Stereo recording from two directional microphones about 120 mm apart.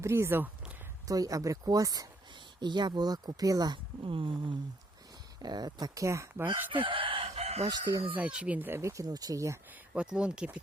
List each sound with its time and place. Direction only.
0.0 s speech: 20° right (ahead or behind)
1.0 s speech: 30° right (ahead or behind)
4.0 s speech: 45° right (ahead or behind); by 6.7 s 15° right (ahead or behind)
6.7 s chicken: 45° right (ahead or behind); by 7.7 s 60° right (ahead or behind)
8.1 s speech: 10° right (ahead or behind); by 9.6 s 25° right (ahead or behind)
9.9 s speech: 10° right (ahead or behind)